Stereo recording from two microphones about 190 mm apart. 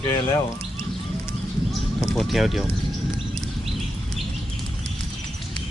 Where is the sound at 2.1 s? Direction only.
Centre (ahead or behind).